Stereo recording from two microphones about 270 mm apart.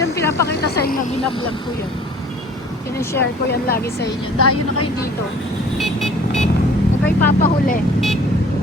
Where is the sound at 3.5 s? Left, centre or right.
Left.